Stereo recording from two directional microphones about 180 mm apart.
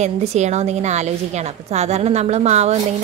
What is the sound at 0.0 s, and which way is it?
Speech, 40° right (ahead or behind).